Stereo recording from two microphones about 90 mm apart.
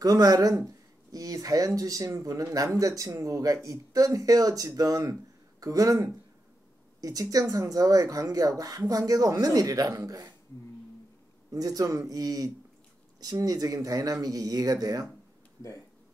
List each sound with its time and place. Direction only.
0.0 s speech: 45° right (ahead or behind)
11.5 s speech: 40° right (ahead or behind)